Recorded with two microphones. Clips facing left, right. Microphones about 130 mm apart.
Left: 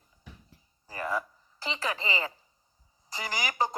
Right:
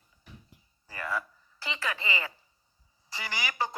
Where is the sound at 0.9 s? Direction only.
35° left (ahead or behind).